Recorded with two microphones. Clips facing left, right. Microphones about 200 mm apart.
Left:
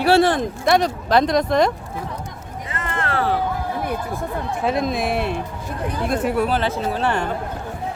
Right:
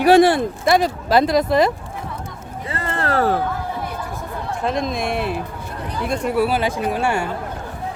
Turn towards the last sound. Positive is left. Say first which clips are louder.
# right 1 dB
turn(degrees=-10)  # may be behind; listen again after turning